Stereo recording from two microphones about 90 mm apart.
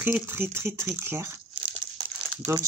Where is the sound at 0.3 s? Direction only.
25° right (ahead or behind).